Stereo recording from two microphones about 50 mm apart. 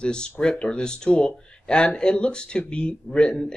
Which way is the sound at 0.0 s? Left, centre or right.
Centre.